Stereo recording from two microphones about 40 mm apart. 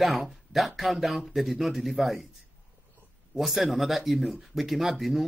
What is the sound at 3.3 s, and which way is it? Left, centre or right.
A man's voice, centre.